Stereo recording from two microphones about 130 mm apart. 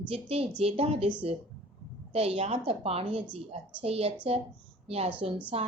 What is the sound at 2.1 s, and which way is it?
A woman's voice, 50° right (ahead or behind).